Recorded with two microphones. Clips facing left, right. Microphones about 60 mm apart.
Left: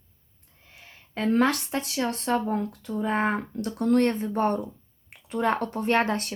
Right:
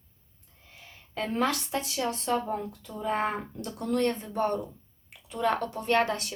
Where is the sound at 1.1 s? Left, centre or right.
Left.